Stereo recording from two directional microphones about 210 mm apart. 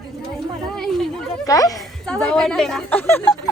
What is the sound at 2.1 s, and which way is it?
A woman's voice, 5° left (ahead or behind).